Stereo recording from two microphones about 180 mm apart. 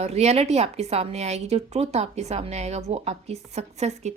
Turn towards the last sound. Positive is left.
turn(degrees=-35)  # may be behind; listen again after turning